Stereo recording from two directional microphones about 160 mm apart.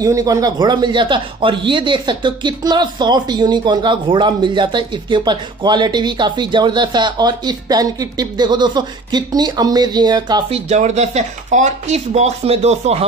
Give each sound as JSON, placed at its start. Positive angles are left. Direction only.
{"t": 0.0, "sound": "speech", "side_deg": -20}
{"t": 10.5, "sound": "speech", "side_deg": -45}